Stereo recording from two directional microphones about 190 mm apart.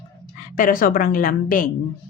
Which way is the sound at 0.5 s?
45° left (ahead or behind).